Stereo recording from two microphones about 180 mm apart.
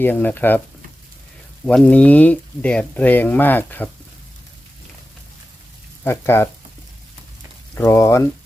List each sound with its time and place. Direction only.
0.0 s speech: 10° left (ahead or behind)
1.6 s speech: 5° left (ahead or behind)
6.1 s speech: 15° left (ahead or behind)
7.8 s speech: 15° left (ahead or behind)